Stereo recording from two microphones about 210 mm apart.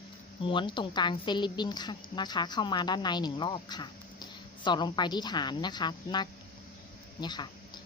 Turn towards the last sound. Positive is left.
turn(degrees=20)  # may be behind; listen again after turning